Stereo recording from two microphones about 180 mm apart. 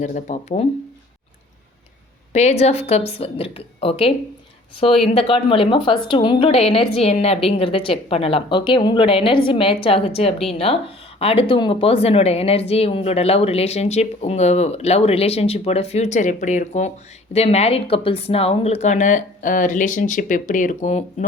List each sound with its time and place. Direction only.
0.0 s a woman's voice: 40° left (ahead or behind)
2.3 s a woman's voice: 40° left (ahead or behind)